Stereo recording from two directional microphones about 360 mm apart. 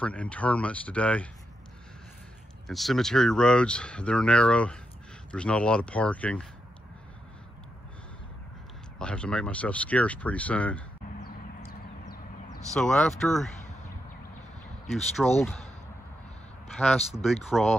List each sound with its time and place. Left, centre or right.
0.0 s speech: centre
2.7 s speech: centre
8.9 s speech: centre
11.1 s a sound: left
12.7 s speech: centre
14.9 s speech: centre
16.7 s speech: centre